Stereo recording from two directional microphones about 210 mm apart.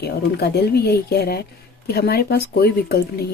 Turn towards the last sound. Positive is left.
turn(degrees=50)  # may be behind; listen again after turning